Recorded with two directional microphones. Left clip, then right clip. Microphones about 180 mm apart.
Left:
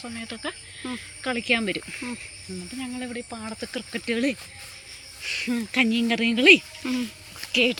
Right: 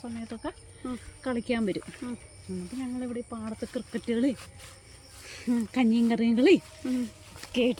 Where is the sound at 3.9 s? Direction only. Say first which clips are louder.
Left 3 dB; 25° right (ahead or behind).